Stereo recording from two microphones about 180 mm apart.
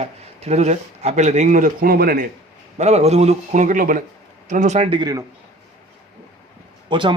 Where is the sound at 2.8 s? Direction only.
40° right (ahead or behind); by 5.3 s 20° right (ahead or behind).